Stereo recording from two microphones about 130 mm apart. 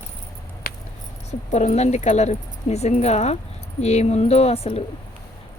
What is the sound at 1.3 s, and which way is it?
Speech, 60° left (ahead or behind).